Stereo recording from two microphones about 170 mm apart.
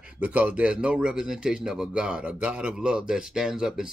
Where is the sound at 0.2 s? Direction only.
10° right (ahead or behind).